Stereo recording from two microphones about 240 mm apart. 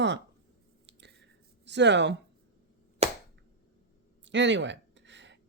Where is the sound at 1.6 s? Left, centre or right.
Right.